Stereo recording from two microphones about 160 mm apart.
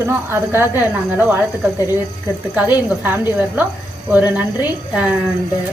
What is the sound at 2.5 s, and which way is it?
A woman's voice, 10° right (ahead or behind).